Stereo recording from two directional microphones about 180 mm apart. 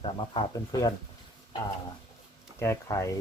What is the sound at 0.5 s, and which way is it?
Speech, 20° left (ahead or behind).